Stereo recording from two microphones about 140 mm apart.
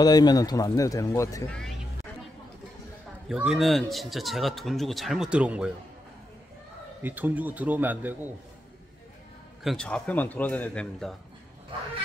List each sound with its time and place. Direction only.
0.0 s speech: 30° left (ahead or behind)
1.5 s speech: 5° left (ahead or behind)
3.3 s speech: 5° right (ahead or behind)
7.0 s speech: 15° right (ahead or behind)
9.6 s a man's voice: centre (ahead or behind)
9.8 s a man's voice: 10° left (ahead or behind)